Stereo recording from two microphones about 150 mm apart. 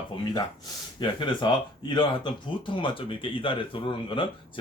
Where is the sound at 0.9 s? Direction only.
30° left (ahead or behind).